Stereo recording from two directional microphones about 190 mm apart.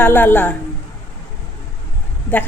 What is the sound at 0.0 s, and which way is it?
Speech, 10° left (ahead or behind).